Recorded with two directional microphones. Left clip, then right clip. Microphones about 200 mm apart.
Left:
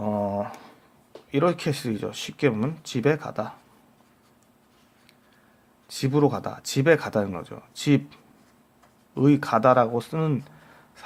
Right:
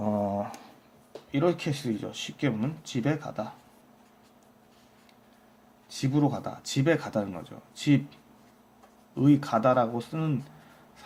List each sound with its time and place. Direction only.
0.0 s a sound: 10° left (ahead or behind)
1.3 s speech: 40° left (ahead or behind)
5.9 s speech: 40° left (ahead or behind)